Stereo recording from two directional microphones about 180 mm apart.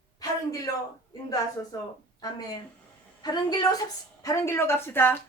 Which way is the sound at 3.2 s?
25° left (ahead or behind).